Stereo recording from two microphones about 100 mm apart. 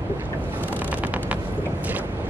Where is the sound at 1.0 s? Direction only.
15° right (ahead or behind).